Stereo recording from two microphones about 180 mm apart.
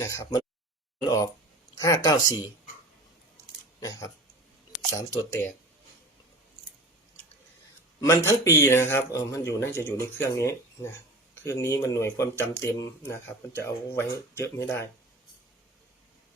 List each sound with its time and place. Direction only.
0.0 s speech: 20° left (ahead or behind)
3.8 s speech: 20° left (ahead or behind)
8.0 s speech: 15° left (ahead or behind)